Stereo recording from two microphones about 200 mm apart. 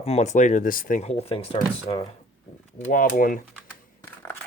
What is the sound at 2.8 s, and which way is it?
Speech, 40° left (ahead or behind).